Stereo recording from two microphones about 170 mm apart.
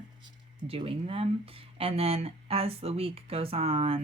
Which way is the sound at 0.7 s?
35° right (ahead or behind).